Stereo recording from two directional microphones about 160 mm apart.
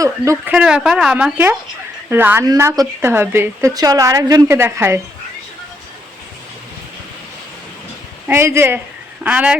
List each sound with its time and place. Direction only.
0.0 s speech: 20° right (ahead or behind)
0.5 s a woman's voice: 5° right (ahead or behind)
8.3 s a woman's voice: 15° right (ahead or behind)